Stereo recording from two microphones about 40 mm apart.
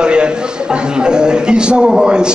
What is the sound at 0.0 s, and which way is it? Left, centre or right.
A man's voice, right.